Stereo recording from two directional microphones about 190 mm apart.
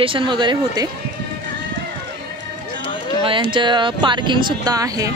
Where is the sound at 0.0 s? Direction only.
25° right (ahead or behind).